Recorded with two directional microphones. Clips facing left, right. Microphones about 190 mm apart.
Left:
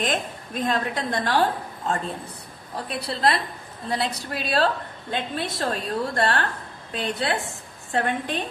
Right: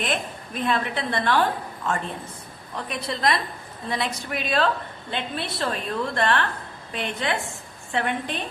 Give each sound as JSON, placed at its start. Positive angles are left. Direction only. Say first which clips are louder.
{"t": 0.0, "sound": "a woman's voice", "louder": "left 1 dB", "side_deg": 40}
{"t": 2.7, "sound": "a woman's voice", "louder": "even", "side_deg": 30}